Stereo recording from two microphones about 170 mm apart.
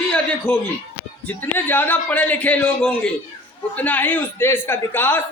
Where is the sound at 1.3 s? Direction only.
10° left (ahead or behind).